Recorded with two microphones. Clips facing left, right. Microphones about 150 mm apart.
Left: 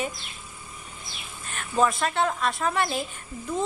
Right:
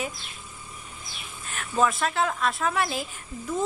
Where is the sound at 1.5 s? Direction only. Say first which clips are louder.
Left 1 dB; centre (ahead or behind).